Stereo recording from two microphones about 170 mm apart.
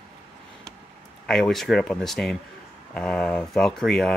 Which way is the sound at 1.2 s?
Centre (ahead or behind).